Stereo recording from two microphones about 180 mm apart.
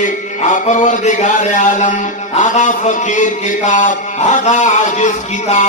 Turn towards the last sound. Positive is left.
turn(degrees=40)  # may be behind; listen again after turning